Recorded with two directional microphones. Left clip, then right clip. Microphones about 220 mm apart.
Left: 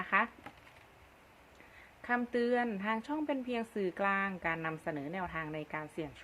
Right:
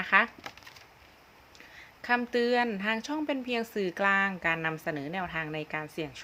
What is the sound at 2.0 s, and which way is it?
Speech, 15° right (ahead or behind).